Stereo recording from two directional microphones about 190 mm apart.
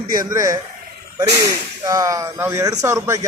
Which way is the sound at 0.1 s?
20° right (ahead or behind).